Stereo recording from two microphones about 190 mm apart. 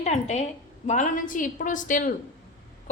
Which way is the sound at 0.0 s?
35° left (ahead or behind).